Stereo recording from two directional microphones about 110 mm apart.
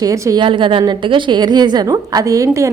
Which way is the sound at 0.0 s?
30° right (ahead or behind).